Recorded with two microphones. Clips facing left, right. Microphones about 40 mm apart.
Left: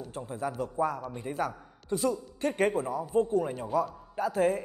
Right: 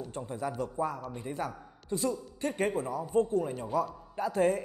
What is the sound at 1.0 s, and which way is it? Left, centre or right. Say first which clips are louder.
Speech: left 2 dB; centre.